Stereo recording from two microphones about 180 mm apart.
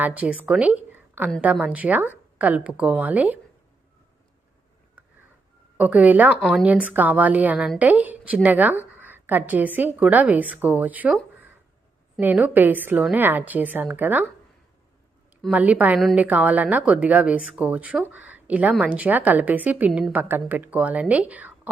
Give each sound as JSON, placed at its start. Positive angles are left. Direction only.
{"t": 0.0, "sound": "a woman's voice", "side_deg": -5}
{"t": 5.7, "sound": "a woman's voice", "side_deg": -10}
{"t": 12.2, "sound": "a woman's voice", "side_deg": -10}
{"t": 15.4, "sound": "a woman's voice", "side_deg": -5}